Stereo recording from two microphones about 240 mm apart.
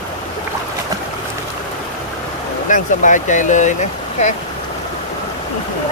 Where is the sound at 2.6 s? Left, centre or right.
Left.